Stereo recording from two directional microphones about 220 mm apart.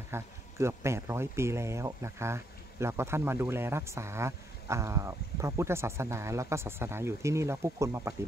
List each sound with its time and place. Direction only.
0.1 s speech: 10° right (ahead or behind)